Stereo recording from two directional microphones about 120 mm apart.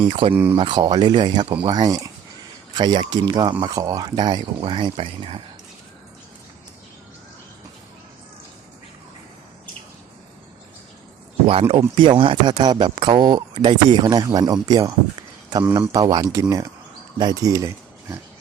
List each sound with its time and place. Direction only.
0.0 s speech: 45° right (ahead or behind)
11.7 s speech: 45° right (ahead or behind); by 18.2 s 25° right (ahead or behind)